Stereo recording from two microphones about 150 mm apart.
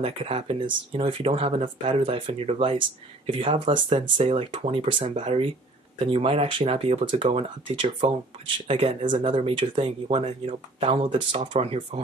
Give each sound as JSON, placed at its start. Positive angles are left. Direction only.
{"t": 0.0, "sound": "speech", "side_deg": -40}